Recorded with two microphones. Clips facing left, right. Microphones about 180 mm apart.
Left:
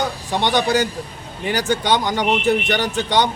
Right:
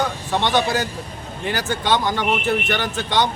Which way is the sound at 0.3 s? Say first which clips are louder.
Left 2 dB; 15° left (ahead or behind).